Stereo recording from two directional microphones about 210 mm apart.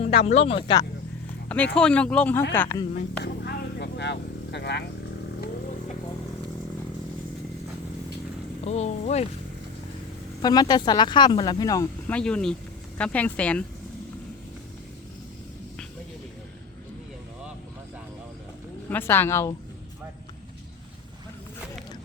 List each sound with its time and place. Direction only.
0.0 s speech: 30° left (ahead or behind)
1.5 s speech: 5° left (ahead or behind)
3.4 s vehicle: 55° left (ahead or behind)
8.6 s speech: 30° left (ahead or behind)
10.4 s speech: 20° left (ahead or behind)
18.9 s speech: 10° left (ahead or behind)